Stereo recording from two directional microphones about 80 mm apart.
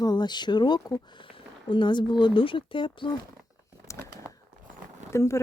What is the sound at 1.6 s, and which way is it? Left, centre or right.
Speech, left.